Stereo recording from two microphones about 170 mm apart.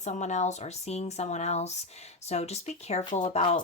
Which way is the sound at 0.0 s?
45° left (ahead or behind).